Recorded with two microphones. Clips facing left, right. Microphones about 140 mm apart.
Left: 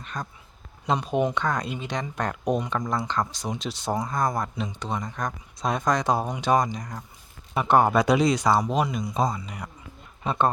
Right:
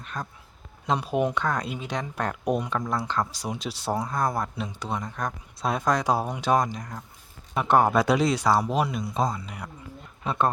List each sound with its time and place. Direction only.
0.0 s speech: 5° right (ahead or behind)